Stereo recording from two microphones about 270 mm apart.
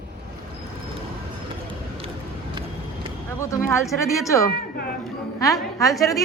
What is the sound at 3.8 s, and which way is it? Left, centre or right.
Speech, centre.